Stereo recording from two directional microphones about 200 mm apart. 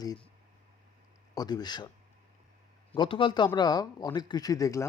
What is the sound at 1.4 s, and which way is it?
Speech, 20° left (ahead or behind).